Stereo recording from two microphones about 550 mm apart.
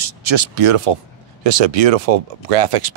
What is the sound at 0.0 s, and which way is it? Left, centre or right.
Speech, right.